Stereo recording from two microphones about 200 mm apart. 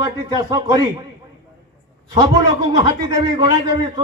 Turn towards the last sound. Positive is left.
turn(degrees=-20)  # may be behind; listen again after turning